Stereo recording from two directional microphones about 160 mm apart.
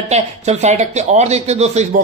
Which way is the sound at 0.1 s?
45° right (ahead or behind).